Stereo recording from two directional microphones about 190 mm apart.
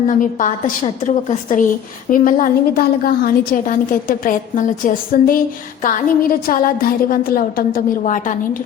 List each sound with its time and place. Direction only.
0.1 s a woman's voice: 40° left (ahead or behind)